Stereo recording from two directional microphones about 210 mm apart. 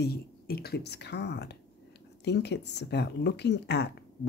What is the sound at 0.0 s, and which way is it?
Speech, 50° left (ahead or behind).